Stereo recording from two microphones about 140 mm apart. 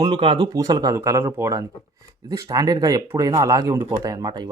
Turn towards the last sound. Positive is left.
turn(degrees=-30)  # may be behind; listen again after turning